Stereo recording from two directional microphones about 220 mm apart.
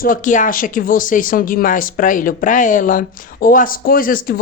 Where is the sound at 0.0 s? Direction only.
35° left (ahead or behind).